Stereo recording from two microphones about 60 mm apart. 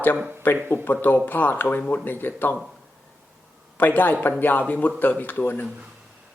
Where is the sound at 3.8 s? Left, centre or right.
Left.